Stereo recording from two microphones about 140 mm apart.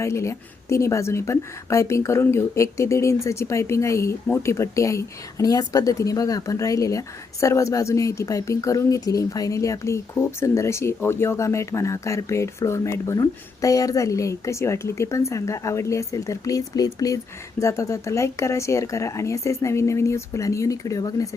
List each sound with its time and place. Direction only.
0.0 s a woman's voice: 20° left (ahead or behind)